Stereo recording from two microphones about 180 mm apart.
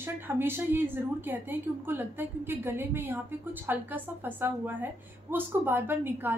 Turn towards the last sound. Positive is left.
turn(degrees=-10)  # may be behind; listen again after turning